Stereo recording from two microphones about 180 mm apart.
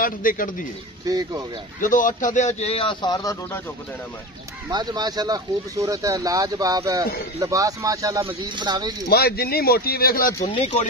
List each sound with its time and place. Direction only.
0.0 s a man's voice: 50° left (ahead or behind)
1.0 s speech: 20° right (ahead or behind)
1.8 s speech: 50° left (ahead or behind); by 3.6 s 20° left (ahead or behind)
4.6 s speech: 25° right (ahead or behind)
9.1 s speech: 60° left (ahead or behind)
10.5 s speech: 35° left (ahead or behind)